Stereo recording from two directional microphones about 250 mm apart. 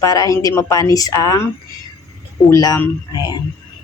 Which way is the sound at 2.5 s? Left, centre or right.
Centre.